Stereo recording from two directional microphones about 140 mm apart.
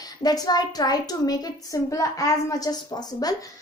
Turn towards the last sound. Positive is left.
turn(degrees=30)  # may be behind; listen again after turning